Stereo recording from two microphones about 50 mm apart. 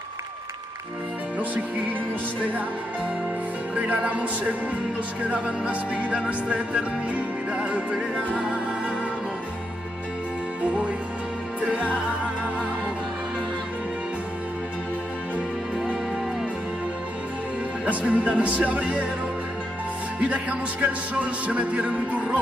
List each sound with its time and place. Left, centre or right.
3.7 s music: right
10.6 s music: right
17.8 s speech: right
18.3 s music: right
20.2 s music: right